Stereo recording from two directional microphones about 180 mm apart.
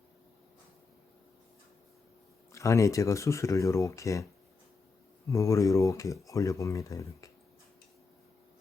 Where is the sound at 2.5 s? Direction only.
15° left (ahead or behind).